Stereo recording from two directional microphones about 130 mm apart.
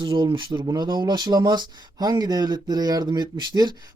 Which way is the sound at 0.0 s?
40° right (ahead or behind).